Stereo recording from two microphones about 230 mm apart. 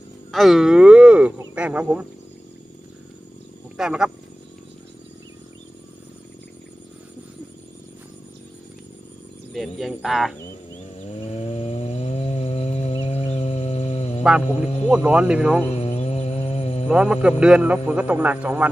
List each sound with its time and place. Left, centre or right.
0.3 s speech: centre
3.8 s speech: centre
9.5 s speech: centre
11.3 s chainsaw: left
14.3 s speech: centre
15.7 s mantra: left
16.9 s speech: centre